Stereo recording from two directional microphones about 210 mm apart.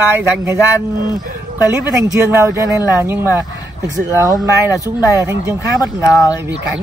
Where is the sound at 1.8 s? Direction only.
15° right (ahead or behind).